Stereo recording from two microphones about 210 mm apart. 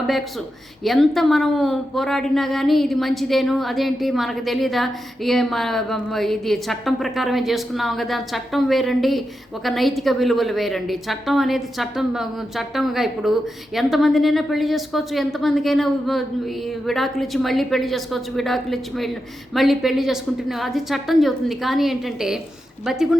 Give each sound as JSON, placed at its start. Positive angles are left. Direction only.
{"t": 0.9, "sound": "a woman's voice", "side_deg": 0}